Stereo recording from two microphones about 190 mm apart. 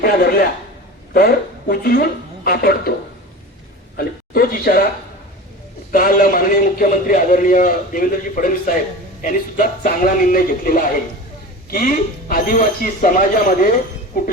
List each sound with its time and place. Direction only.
0.0 s speech: 50° left (ahead or behind)
3.9 s a woman's voice: 50° left (ahead or behind)
5.9 s a man's voice: 45° left (ahead or behind)